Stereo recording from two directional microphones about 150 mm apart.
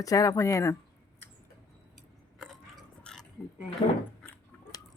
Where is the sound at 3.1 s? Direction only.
5° left (ahead or behind).